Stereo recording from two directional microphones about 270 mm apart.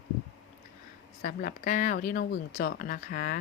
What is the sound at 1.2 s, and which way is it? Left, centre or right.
Speech, left.